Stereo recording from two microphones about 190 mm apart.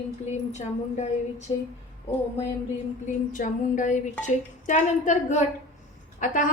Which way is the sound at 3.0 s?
45° left (ahead or behind).